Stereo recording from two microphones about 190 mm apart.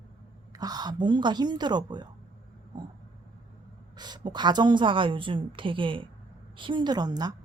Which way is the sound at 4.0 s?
20° right (ahead or behind).